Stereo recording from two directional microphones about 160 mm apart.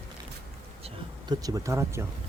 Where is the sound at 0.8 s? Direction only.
25° right (ahead or behind).